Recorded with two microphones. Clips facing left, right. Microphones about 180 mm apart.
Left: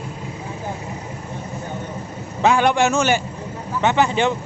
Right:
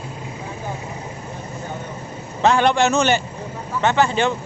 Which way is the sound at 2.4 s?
10° left (ahead or behind).